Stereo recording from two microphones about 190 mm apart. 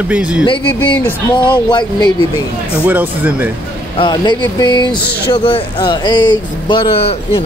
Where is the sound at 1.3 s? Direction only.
25° left (ahead or behind).